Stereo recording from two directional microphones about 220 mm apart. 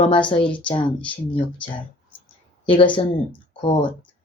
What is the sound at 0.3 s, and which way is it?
Speech, 20° left (ahead or behind).